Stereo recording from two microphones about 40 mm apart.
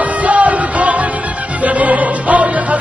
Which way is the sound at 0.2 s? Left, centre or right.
Right.